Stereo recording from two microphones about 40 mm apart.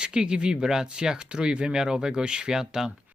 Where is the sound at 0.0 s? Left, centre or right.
Right.